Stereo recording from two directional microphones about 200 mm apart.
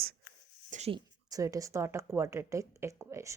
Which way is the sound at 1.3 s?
15° right (ahead or behind).